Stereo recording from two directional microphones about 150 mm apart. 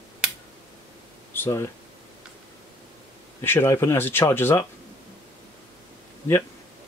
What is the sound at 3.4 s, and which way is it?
Speech, 15° left (ahead or behind).